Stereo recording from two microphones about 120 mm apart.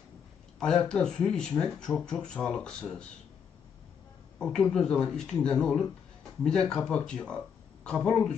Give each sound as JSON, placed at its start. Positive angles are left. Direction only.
{"t": 0.6, "sound": "speech", "side_deg": 5}
{"t": 4.4, "sound": "speech", "side_deg": 5}